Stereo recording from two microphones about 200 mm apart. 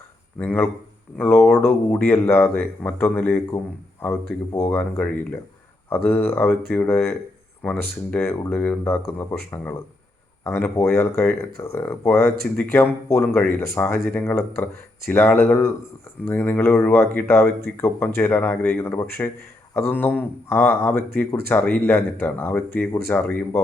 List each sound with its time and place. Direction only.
0.3 s speech: 10° left (ahead or behind)
4.7 s speech: 10° left (ahead or behind)
6.5 s speech: 50° left (ahead or behind)
6.7 s speech: 10° left (ahead or behind)